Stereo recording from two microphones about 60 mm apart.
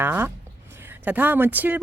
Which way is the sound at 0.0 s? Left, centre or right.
Right.